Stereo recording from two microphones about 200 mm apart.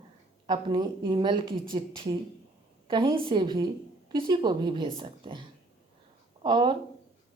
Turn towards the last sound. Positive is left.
turn(degrees=-20)  # may be behind; listen again after turning